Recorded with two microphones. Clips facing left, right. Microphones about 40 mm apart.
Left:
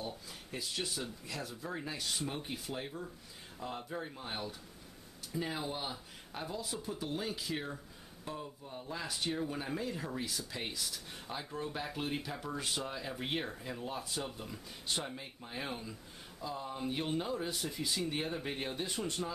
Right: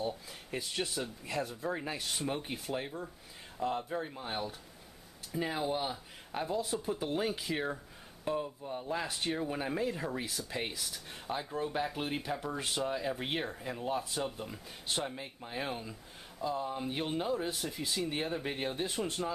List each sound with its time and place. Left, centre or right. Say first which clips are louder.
0.0 s speech: right 6 dB; centre
7.5 s speech: right 5 dB; centre